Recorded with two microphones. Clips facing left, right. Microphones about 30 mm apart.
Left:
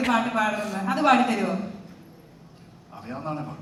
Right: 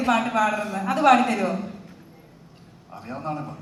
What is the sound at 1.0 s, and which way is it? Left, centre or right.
Speech, right.